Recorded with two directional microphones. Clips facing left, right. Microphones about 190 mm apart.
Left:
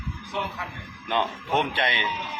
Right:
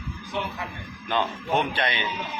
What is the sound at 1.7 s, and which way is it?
Speech, 25° left (ahead or behind).